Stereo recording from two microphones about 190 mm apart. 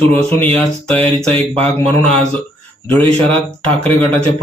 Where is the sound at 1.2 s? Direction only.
30° right (ahead or behind).